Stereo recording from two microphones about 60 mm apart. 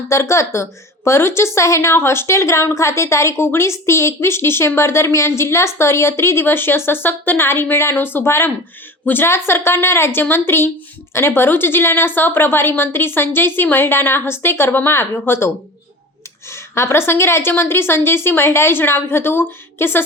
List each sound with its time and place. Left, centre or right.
0.1 s a woman's voice: left